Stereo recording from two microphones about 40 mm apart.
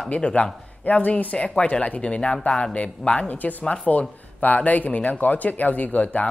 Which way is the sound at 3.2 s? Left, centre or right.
Left.